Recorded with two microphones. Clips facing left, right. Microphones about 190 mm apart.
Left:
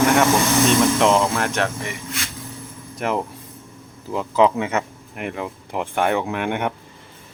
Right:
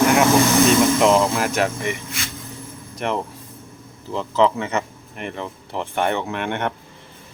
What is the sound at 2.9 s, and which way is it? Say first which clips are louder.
Speech: left 1 dB; 5° left (ahead or behind).